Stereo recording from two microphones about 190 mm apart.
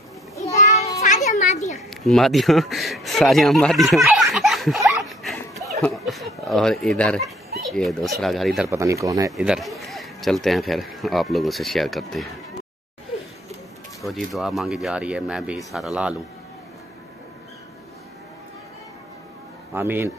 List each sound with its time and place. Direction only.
0.7 s children playing: 20° left (ahead or behind)
1.0 s children playing: 40° left (ahead or behind)
1.9 s speech: centre (ahead or behind)
5.8 s turkey: centre (ahead or behind)
7.7 s speech: centre (ahead or behind)
8.6 s speech: 15° right (ahead or behind)
9.3 s speech: centre (ahead or behind)
14.0 s speech: centre (ahead or behind)
19.7 s speech: 10° right (ahead or behind)